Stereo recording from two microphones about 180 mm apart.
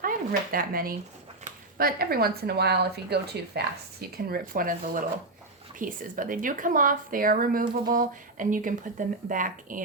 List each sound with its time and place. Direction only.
0.0 s speech: 50° right (ahead or behind)
4.3 s a woman's voice: 50° right (ahead or behind)